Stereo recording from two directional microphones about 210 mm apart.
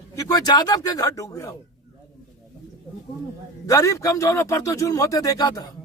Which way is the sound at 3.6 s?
15° left (ahead or behind).